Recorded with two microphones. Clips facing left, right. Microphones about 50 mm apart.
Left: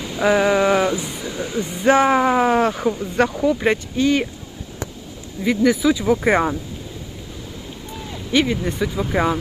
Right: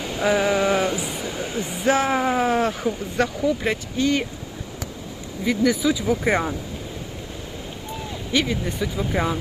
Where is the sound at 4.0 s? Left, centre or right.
Left.